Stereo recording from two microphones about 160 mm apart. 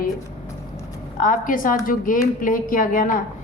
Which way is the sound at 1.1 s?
60° left (ahead or behind).